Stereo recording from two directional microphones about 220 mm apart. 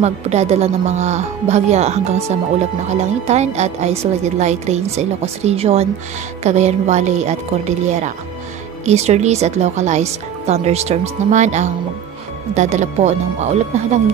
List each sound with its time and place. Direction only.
0.0 s a woman's voice: 30° right (ahead or behind)